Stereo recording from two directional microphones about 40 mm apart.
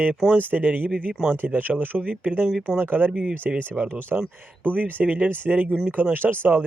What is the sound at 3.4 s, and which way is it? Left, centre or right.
Speech, right.